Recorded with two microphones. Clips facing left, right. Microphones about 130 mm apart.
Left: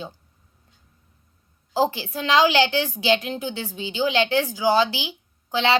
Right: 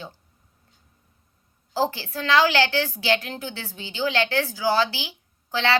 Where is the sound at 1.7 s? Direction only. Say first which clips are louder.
Left 3 dB; 15° left (ahead or behind).